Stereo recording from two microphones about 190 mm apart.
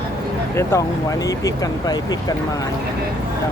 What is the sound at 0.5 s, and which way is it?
Speech, 15° left (ahead or behind).